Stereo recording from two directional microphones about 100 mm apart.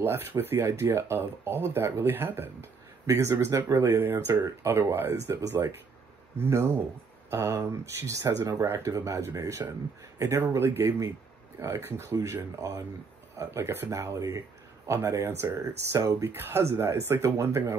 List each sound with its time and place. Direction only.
0.0 s speech: 20° right (ahead or behind)